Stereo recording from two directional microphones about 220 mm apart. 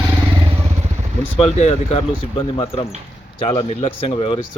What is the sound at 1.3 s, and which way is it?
Speech, 25° left (ahead or behind).